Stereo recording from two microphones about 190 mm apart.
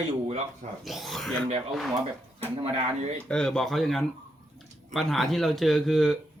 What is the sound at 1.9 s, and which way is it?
Speech, 25° right (ahead or behind).